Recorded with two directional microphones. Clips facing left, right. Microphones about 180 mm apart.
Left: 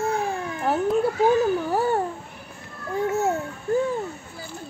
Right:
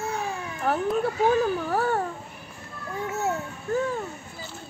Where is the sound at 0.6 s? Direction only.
20° left (ahead or behind).